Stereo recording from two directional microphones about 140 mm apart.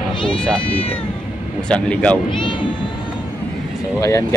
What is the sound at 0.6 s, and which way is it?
Speech, 40° left (ahead or behind).